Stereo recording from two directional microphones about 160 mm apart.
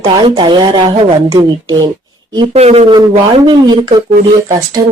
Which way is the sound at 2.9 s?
30° right (ahead or behind).